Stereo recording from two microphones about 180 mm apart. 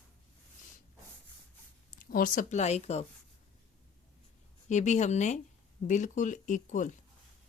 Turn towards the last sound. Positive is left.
turn(degrees=45)  # may be behind; listen again after turning